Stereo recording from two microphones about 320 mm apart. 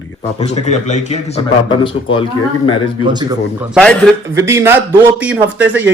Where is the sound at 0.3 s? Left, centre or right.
Centre.